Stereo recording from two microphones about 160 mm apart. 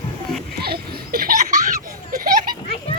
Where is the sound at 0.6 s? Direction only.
70° right (ahead or behind); by 1.6 s 55° right (ahead or behind).